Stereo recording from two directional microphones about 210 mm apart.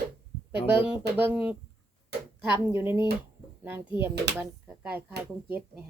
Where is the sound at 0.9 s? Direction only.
5° right (ahead or behind).